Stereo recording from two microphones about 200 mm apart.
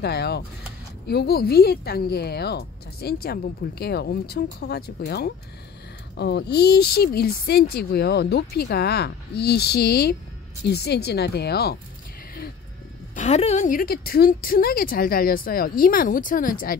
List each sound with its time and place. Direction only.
0.0 s a woman's voice: 55° left (ahead or behind)
13.1 s a woman's voice: 35° left (ahead or behind)